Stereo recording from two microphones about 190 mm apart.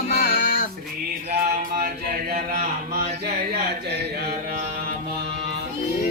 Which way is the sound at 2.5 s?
50° right (ahead or behind).